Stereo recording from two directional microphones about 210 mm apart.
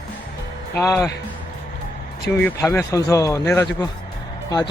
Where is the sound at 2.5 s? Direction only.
10° left (ahead or behind).